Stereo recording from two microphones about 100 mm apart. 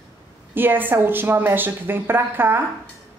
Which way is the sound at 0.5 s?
20° right (ahead or behind).